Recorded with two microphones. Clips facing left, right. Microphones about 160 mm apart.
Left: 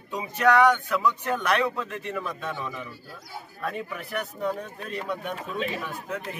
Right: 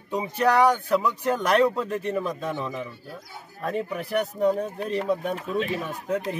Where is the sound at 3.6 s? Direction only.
35° right (ahead or behind).